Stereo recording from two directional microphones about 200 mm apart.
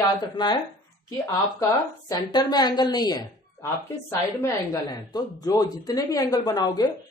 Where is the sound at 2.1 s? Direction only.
20° left (ahead or behind).